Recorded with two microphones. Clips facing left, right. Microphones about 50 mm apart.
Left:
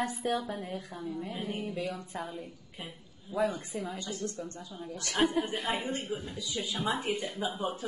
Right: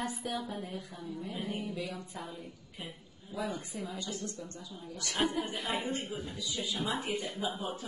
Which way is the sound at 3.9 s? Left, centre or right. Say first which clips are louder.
Left 3 dB; left.